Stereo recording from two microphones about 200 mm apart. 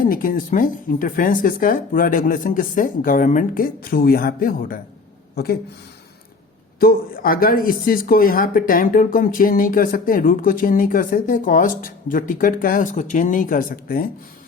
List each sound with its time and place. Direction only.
0.0 s speech: 45° left (ahead or behind)
6.7 s speech: 45° left (ahead or behind)